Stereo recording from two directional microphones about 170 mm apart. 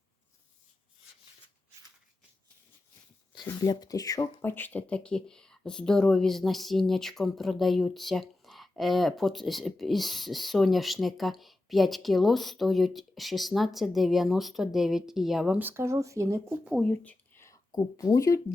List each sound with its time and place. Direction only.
3.3 s speech: 20° left (ahead or behind); by 16.6 s 15° right (ahead or behind)
16.9 s speech: 10° left (ahead or behind)